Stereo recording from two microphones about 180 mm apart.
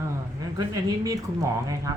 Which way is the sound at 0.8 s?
20° right (ahead or behind).